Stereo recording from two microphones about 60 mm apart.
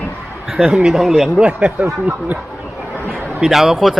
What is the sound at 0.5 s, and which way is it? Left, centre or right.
Speech, centre.